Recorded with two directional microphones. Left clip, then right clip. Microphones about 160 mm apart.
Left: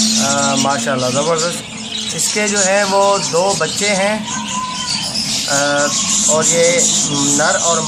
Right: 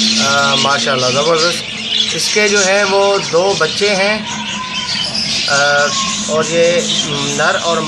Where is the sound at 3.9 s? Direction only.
20° right (ahead or behind).